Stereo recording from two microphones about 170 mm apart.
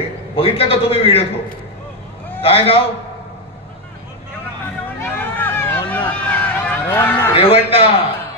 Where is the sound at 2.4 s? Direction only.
35° left (ahead or behind).